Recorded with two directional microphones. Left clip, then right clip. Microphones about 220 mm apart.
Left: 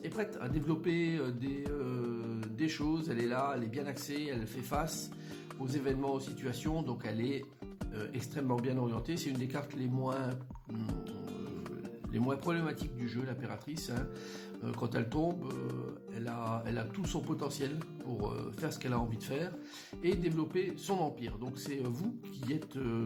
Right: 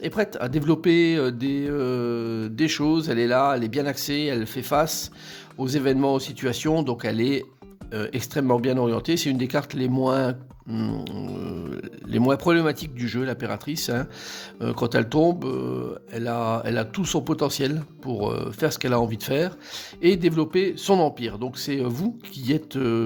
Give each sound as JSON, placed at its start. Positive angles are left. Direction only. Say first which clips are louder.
{"t": 0.0, "sound": "speech", "louder": "right 13 dB", "side_deg": -50}
{"t": 12.1, "sound": "speech", "louder": "right 15 dB", "side_deg": -50}